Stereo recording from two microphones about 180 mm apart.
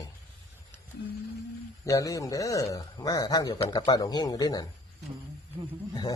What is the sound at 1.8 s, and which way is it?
A man's voice, 20° left (ahead or behind).